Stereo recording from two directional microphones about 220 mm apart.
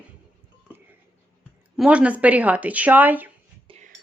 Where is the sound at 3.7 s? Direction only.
25° right (ahead or behind).